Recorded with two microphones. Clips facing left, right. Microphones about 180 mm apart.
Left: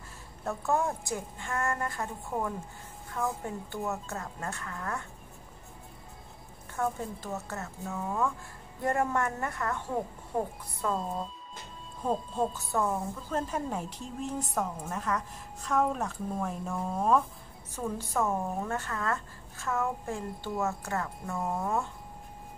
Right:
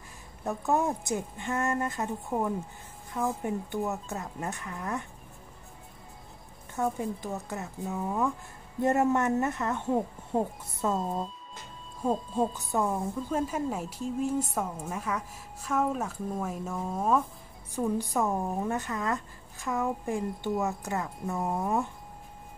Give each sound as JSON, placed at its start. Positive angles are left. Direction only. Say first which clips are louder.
{"t": 0.4, "sound": "a woman's voice", "louder": "right 2 dB", "side_deg": -15}
{"t": 6.7, "sound": "a woman's voice", "louder": "right 2 dB", "side_deg": -15}
{"t": 12.0, "sound": "speech", "louder": "right 2 dB", "side_deg": -10}
{"t": 17.7, "sound": "speech", "louder": "right 3 dB", "side_deg": -15}